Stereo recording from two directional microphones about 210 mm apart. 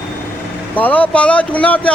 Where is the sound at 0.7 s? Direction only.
10° left (ahead or behind).